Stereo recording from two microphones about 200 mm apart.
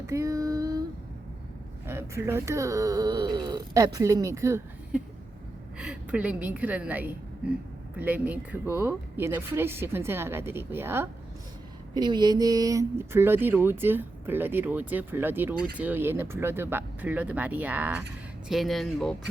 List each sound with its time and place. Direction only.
0.0 s child singing: 15° right (ahead or behind)
1.9 s a woman's voice: 10° right (ahead or behind)